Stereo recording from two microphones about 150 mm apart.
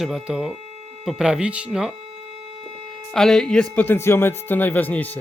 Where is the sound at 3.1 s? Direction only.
5° left (ahead or behind).